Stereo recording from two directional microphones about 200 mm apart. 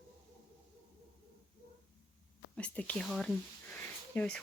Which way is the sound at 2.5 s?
5° left (ahead or behind).